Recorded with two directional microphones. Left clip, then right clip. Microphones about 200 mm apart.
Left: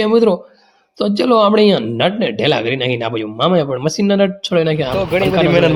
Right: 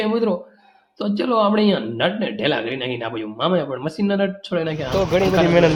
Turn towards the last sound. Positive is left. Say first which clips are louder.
# left 3 dB
turn(degrees=30)  # may be behind; listen again after turning